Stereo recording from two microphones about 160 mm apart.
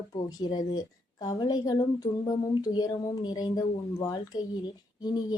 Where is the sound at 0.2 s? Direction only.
30° left (ahead or behind).